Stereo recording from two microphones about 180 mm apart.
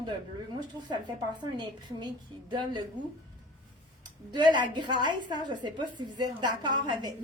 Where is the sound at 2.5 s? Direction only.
25° right (ahead or behind).